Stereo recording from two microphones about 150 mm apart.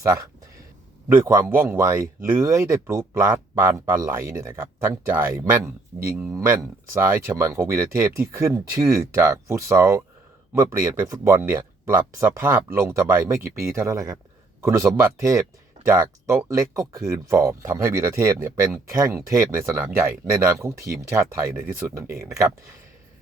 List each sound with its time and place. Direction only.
0.0 s speech: 20° right (ahead or behind)